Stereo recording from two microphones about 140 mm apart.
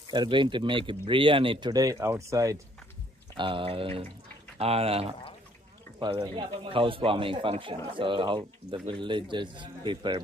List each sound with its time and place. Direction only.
0.1 s speech: 35° right (ahead or behind)
3.3 s speech: 35° right (ahead or behind)
5.9 s speech: 35° right (ahead or behind)